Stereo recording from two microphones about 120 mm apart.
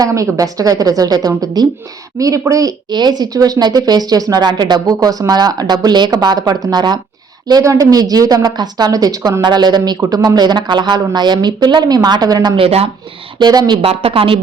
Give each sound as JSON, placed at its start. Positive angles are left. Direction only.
{"t": 0.0, "sound": "speech", "side_deg": -30}
{"t": 12.5, "sound": "speech", "side_deg": -55}
{"t": 13.4, "sound": "speech", "side_deg": -35}
{"t": 13.8, "sound": "a woman's voice", "side_deg": -50}